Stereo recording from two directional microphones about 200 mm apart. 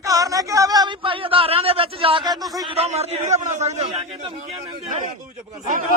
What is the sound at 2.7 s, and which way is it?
A man's voice, 30° right (ahead or behind).